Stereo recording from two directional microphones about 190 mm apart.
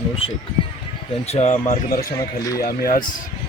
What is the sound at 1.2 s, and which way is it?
A man's voice, 35° left (ahead or behind).